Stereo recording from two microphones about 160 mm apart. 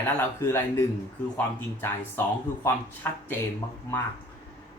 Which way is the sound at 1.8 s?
15° left (ahead or behind).